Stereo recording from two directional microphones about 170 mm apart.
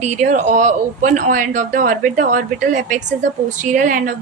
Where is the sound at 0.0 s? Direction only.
40° right (ahead or behind).